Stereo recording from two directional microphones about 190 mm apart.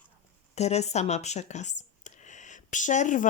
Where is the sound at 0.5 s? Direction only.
35° left (ahead or behind).